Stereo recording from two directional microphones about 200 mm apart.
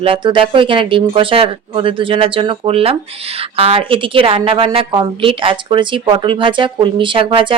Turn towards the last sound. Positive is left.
turn(degrees=-25)  # may be behind; listen again after turning